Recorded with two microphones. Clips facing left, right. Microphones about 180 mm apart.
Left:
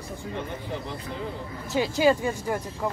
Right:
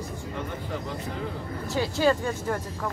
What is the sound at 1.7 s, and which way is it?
Speech, 15° left (ahead or behind).